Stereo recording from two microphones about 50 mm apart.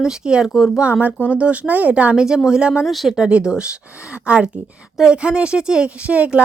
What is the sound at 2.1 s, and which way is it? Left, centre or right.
Speech, centre.